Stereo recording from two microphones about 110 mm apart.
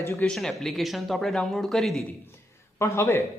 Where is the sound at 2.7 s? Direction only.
25° left (ahead or behind).